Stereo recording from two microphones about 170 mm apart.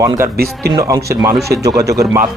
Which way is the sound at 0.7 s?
20° right (ahead or behind).